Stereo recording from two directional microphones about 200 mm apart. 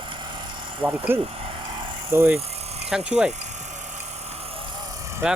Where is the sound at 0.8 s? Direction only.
10° right (ahead or behind).